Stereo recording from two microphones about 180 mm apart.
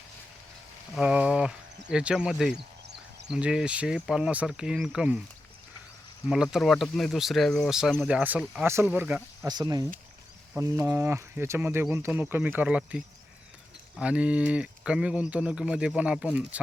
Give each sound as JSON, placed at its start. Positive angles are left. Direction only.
{"t": 0.9, "sound": "speech", "side_deg": -5}
{"t": 2.8, "sound": "a sound", "side_deg": -65}
{"t": 3.2, "sound": "speech", "side_deg": -5}
{"t": 6.2, "sound": "speech", "side_deg": -5}
{"t": 9.5, "sound": "speech", "side_deg": -20}